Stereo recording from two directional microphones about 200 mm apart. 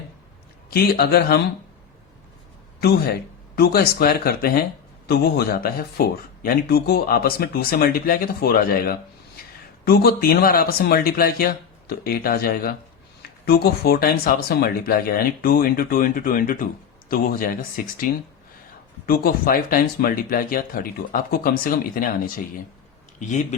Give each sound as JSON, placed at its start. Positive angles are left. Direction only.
{"t": 0.7, "sound": "speech", "side_deg": 50}
{"t": 3.5, "sound": "speech", "side_deg": 50}
{"t": 23.2, "sound": "speech", "side_deg": 35}